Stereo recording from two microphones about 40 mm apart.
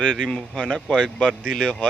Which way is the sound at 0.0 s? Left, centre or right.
Left.